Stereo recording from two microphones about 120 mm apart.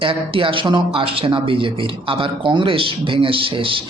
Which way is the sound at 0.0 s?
45° right (ahead or behind).